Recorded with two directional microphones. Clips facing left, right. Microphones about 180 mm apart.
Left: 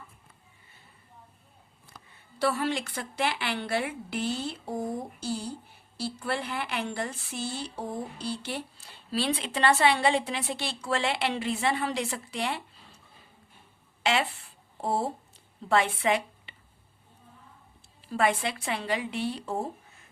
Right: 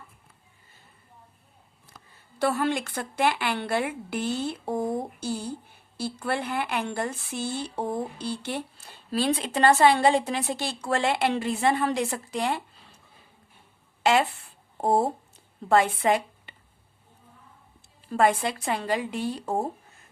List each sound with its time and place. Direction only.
2.4 s a woman's voice: 50° right (ahead or behind)
14.0 s a woman's voice: 45° right (ahead or behind)
18.1 s a woman's voice: 45° right (ahead or behind)